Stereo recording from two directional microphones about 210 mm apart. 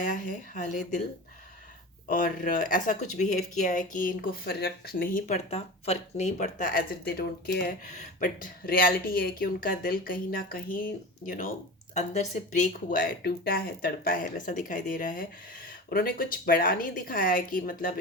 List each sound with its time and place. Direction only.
0.0 s speech: 40° left (ahead or behind)
2.0 s speech: 40° left (ahead or behind)